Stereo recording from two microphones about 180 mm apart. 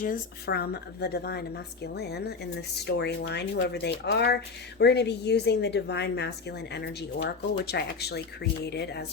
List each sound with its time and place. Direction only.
0.0 s a woman's voice: 55° left (ahead or behind)